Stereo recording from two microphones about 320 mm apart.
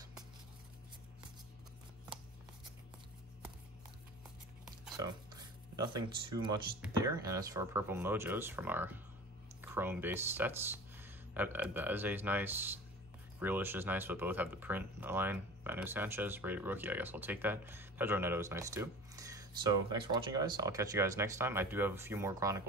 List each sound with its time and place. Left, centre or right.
4.9 s speech: centre